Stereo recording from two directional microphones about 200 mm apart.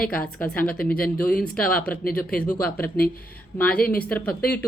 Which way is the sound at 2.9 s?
45° left (ahead or behind).